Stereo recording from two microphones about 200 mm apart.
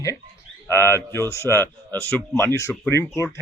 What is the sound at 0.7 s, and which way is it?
Speech, 10° left (ahead or behind).